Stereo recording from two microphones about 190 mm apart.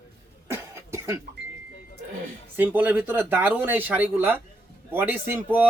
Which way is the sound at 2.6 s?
10° right (ahead or behind).